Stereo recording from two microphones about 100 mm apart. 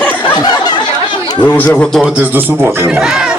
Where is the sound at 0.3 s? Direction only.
45° left (ahead or behind).